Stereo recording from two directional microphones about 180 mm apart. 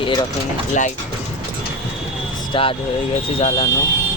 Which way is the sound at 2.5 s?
30° left (ahead or behind).